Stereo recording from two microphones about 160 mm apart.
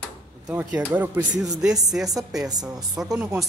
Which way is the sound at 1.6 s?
5° right (ahead or behind).